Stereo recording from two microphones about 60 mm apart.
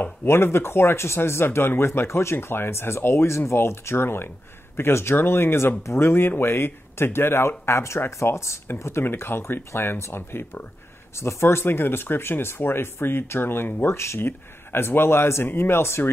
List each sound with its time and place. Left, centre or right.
0.0 s speech: left
11.1 s speech: left